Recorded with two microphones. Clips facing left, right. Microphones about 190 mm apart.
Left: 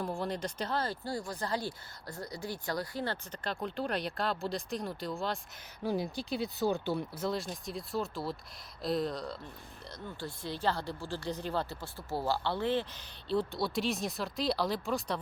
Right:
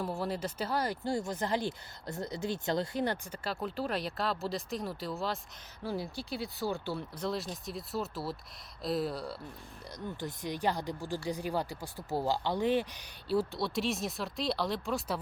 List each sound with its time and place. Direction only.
0.0 s speech: 5° right (ahead or behind)
5.8 s speech: 15° left (ahead or behind)
7.2 s speech: centre (ahead or behind)